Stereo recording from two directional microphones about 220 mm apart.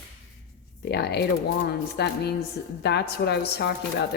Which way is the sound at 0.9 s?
50° left (ahead or behind).